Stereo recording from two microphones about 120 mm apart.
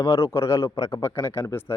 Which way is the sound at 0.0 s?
25° left (ahead or behind).